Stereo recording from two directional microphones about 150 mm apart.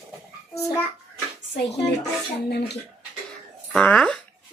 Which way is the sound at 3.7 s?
5° left (ahead or behind).